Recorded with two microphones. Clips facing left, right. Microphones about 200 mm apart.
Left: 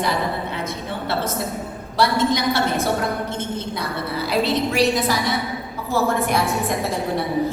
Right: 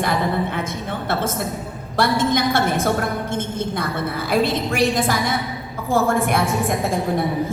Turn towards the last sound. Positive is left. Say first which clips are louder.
# right 1 dB
turn(degrees=-50)  # may be behind; listen again after turning